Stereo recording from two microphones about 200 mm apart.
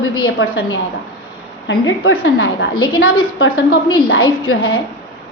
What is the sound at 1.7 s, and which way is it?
A woman's voice, 80° left.